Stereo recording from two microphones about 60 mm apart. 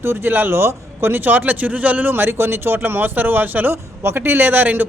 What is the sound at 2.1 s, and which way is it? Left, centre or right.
Speech, right.